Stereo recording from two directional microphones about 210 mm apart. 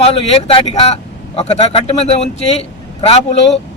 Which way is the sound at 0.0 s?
30° left (ahead or behind).